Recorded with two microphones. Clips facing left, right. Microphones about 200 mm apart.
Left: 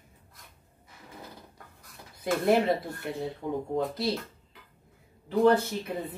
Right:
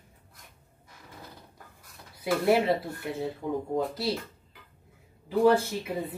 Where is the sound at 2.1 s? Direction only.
10° right (ahead or behind).